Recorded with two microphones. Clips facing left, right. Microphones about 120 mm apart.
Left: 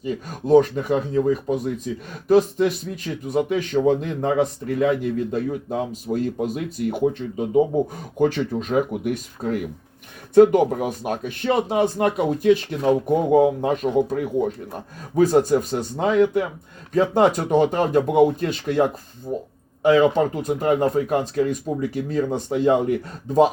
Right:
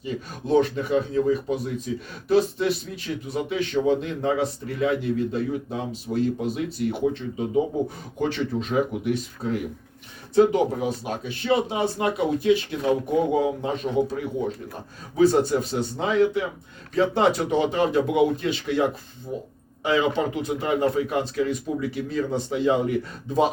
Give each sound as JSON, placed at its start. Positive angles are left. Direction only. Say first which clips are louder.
{"t": 0.0, "sound": "speech", "louder": "left 4 dB", "side_deg": 45}